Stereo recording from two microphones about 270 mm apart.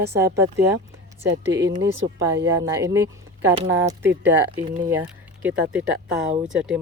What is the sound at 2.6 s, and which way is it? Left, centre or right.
Speech, centre.